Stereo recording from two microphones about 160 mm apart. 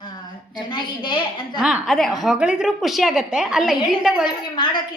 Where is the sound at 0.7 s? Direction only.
30° left (ahead or behind).